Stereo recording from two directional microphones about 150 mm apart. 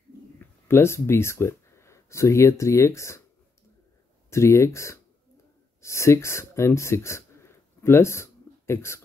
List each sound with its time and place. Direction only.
0.4 s speech: 15° left (ahead or behind)
4.3 s speech: 20° left (ahead or behind)